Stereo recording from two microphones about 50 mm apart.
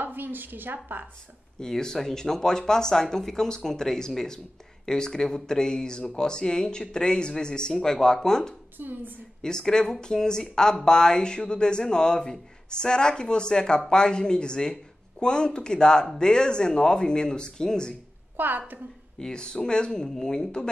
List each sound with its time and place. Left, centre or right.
0.0 s a woman's voice: right
1.6 s speech: centre
8.7 s a woman's voice: right
9.4 s speech: centre
18.3 s a sound: right
19.1 s speech: centre